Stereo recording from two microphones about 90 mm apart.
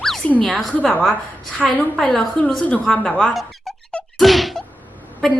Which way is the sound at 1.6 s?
10° right (ahead or behind).